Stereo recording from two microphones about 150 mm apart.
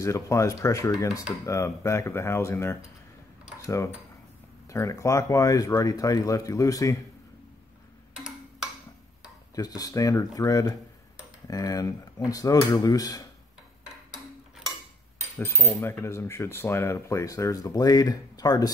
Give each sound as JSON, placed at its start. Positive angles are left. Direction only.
{"t": 0.0, "sound": "speech", "side_deg": 20}
{"t": 9.6, "sound": "speech", "side_deg": 25}
{"t": 15.3, "sound": "speech", "side_deg": 15}